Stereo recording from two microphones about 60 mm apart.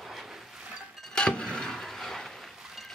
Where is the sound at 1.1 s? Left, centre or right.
Centre.